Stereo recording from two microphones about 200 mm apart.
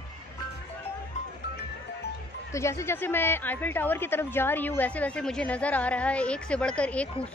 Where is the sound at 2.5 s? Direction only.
15° left (ahead or behind).